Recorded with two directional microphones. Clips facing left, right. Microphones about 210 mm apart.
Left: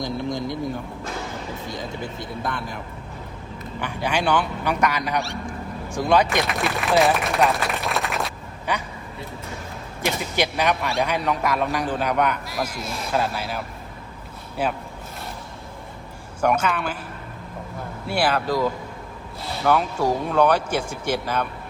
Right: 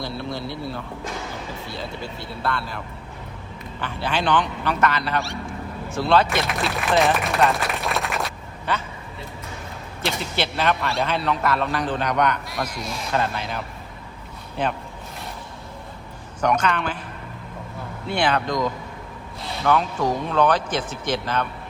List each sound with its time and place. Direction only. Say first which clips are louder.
0.0 s a man's voice: left 3 dB; 15° left (ahead or behind)
5.2 s speech: even; centre (ahead or behind)
5.9 s a man's voice: even; 15° left (ahead or behind)
6.7 s speech: left 1 dB; centre (ahead or behind)
8.7 s a man's voice: even; 15° left (ahead or behind)
10.1 s a man's voice: left 2 dB; 15° left (ahead or behind)
14.6 s a man's voice: even; 10° left (ahead or behind)
16.4 s a man's voice: even; 5° left (ahead or behind)
18.1 s a man's voice: even; 5° left (ahead or behind)